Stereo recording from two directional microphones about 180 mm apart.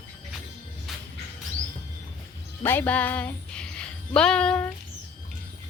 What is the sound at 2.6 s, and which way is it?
Music, 10° left (ahead or behind).